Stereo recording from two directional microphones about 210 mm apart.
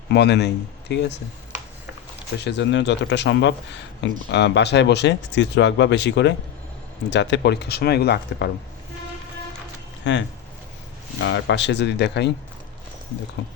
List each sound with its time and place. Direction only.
0.1 s speech: 55° left (ahead or behind)
2.4 s speech: 55° left (ahead or behind)
10.0 s speech: 60° left (ahead or behind)